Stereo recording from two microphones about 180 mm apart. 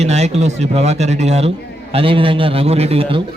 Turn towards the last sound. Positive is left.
turn(degrees=-35)  # may be behind; listen again after turning